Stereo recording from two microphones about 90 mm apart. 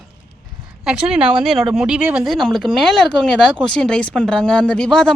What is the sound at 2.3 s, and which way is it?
Speech, centre (ahead or behind).